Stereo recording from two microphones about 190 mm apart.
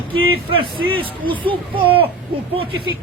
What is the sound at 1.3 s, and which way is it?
Speech, 25° right (ahead or behind).